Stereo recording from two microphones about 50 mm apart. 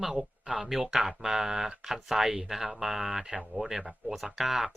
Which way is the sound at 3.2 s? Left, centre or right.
Centre.